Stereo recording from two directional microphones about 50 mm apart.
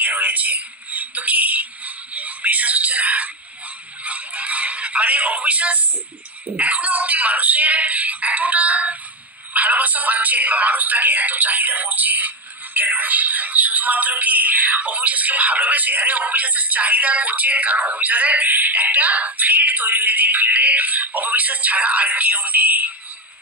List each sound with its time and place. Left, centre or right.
0.0 s speech: right